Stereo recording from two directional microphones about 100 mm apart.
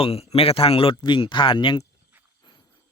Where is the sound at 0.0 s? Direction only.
80° left; by 1.8 s 55° left (ahead or behind).